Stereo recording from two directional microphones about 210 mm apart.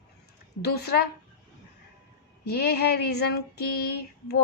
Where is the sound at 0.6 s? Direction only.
50° left (ahead or behind).